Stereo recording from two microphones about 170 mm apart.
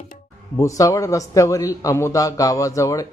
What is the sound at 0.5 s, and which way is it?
A man's voice, 20° left (ahead or behind).